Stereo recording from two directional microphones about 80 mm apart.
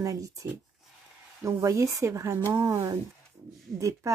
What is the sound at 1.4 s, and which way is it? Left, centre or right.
Speech, right.